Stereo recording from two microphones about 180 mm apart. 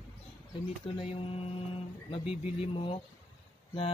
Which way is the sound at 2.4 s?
30° left (ahead or behind).